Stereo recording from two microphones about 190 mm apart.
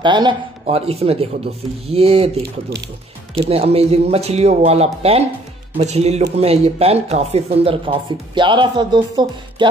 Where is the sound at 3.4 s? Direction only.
30° right (ahead or behind).